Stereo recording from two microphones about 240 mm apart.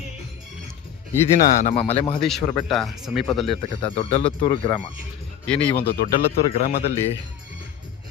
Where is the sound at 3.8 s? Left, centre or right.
Left.